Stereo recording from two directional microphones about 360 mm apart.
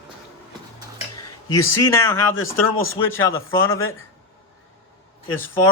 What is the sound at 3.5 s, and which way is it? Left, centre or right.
Speech, centre.